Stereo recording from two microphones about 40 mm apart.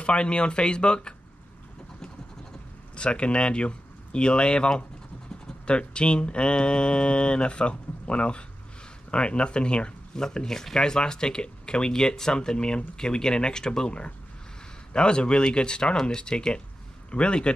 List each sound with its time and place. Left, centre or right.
0.0 s speech: left
3.0 s speech: left